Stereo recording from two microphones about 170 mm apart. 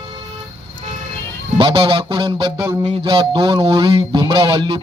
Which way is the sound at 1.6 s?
30° right (ahead or behind).